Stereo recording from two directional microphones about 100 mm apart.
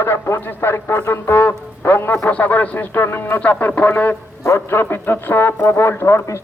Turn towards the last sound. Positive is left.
turn(degrees=30)  # may be behind; listen again after turning